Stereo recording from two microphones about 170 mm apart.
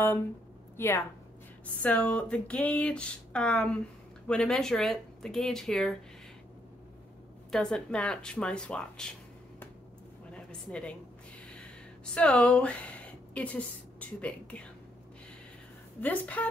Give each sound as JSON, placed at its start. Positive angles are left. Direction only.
{"t": 0.7, "sound": "a woman's voice", "side_deg": 15}
{"t": 7.5, "sound": "speech", "side_deg": 5}
{"t": 10.3, "sound": "a sound", "side_deg": 5}
{"t": 12.1, "sound": "a woman's voice", "side_deg": 5}
{"t": 16.0, "sound": "a woman's voice", "side_deg": 10}